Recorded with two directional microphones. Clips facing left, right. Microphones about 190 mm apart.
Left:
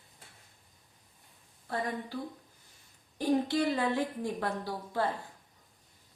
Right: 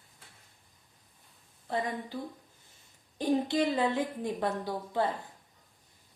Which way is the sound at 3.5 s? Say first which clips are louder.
Right 1 dB; 20° right (ahead or behind).